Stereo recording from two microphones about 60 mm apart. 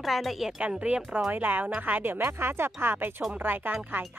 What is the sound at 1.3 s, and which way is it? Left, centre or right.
Speech, right.